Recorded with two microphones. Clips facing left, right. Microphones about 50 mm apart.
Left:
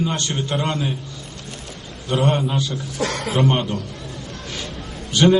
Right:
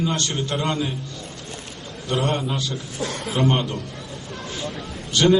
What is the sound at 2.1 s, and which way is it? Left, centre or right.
Speech, centre.